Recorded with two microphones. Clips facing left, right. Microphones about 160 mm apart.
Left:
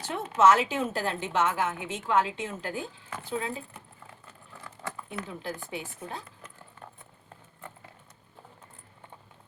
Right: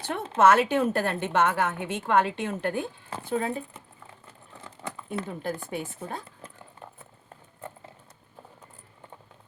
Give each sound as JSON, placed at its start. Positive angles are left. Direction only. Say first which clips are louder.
{"t": 0.1, "sound": "a woman's voice", "louder": "right 1 dB", "side_deg": -60}
{"t": 3.2, "sound": "speech", "louder": "right 5 dB", "side_deg": -50}
{"t": 4.6, "sound": "a sound", "louder": "right 1 dB", "side_deg": -20}
{"t": 5.4, "sound": "speech", "louder": "right 5 dB", "side_deg": -50}